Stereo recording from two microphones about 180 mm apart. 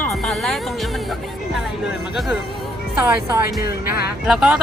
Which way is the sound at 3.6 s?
60° left (ahead or behind).